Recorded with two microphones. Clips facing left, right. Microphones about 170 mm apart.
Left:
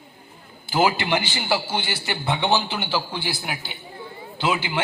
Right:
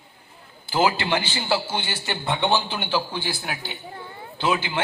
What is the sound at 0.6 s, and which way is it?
A man's voice, 15° left (ahead or behind).